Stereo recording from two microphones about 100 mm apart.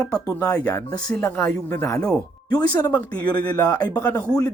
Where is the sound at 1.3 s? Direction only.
20° left (ahead or behind).